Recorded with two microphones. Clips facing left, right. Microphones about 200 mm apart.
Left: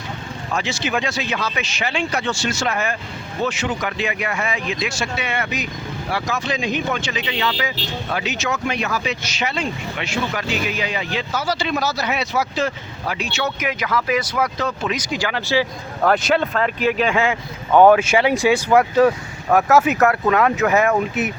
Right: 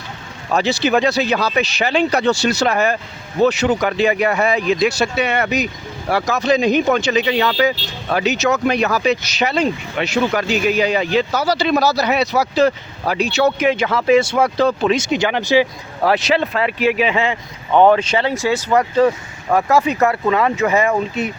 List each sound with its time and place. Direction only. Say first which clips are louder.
0.5 s speech: right 7 dB; 35° right (ahead or behind); by 16.0 s 15° right (ahead or behind)
16.0 s speech: right 1 dB; centre (ahead or behind)